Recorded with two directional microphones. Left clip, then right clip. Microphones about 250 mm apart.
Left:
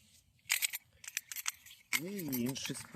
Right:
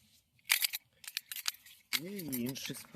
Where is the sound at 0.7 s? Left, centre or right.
Right.